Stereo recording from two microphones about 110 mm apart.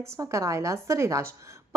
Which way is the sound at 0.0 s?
25° right (ahead or behind).